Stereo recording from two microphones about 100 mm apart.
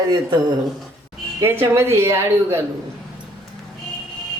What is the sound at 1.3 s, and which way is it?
A woman's voice, 25° right (ahead or behind).